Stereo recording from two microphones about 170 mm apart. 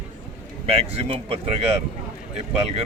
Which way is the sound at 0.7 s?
35° right (ahead or behind).